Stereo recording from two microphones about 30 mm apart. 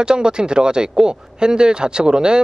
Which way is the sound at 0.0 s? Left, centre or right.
Right.